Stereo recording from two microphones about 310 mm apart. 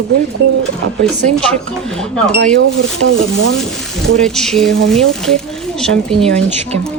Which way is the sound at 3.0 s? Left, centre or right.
Right.